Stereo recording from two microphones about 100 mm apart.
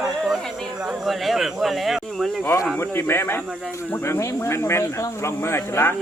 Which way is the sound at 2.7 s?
25° left (ahead or behind).